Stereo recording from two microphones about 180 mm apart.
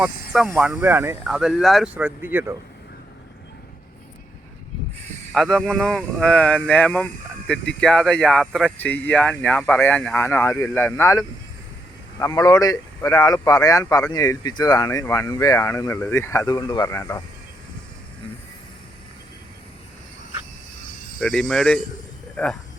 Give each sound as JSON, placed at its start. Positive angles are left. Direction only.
{"t": 0.0, "sound": "speech", "side_deg": 0}
{"t": 5.3, "sound": "speech", "side_deg": 0}
{"t": 21.2, "sound": "speech", "side_deg": 5}